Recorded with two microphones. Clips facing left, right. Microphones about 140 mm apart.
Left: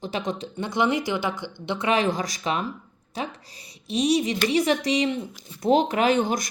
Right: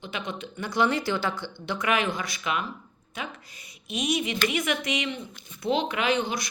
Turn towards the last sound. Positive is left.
turn(degrees=45)  # may be behind; listen again after turning